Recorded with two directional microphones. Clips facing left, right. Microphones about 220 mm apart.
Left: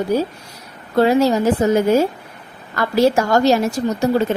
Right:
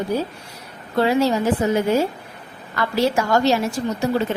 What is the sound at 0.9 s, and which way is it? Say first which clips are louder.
Speech: left 4 dB; 45° left (ahead or behind).